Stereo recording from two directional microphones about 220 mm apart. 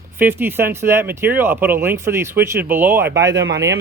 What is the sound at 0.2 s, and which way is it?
Speech, 10° right (ahead or behind).